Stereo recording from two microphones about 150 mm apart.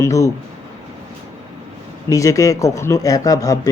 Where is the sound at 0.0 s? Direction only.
20° left (ahead or behind).